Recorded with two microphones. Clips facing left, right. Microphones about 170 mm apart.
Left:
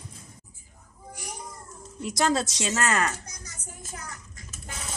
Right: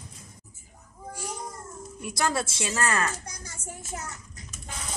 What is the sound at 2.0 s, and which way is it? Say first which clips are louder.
Speech: left 3 dB; 20° left (ahead or behind).